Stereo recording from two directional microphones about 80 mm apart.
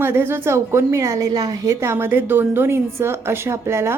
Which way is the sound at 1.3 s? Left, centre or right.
Right.